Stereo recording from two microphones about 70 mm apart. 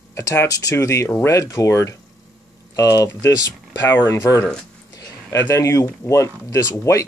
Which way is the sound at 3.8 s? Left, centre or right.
Left.